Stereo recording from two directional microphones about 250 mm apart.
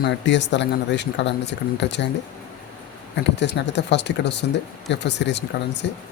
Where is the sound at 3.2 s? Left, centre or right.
Left.